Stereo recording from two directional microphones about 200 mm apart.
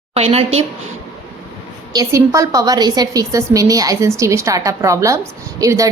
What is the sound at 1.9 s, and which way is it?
A woman's voice, 15° right (ahead or behind).